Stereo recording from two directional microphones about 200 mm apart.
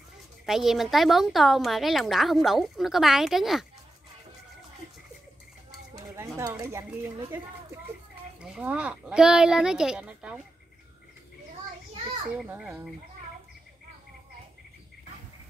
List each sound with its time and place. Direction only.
0.5 s a woman's voice: centre (ahead or behind)
5.9 s a woman's voice: 15° right (ahead or behind)
12.4 s a woman's voice: 5° right (ahead or behind)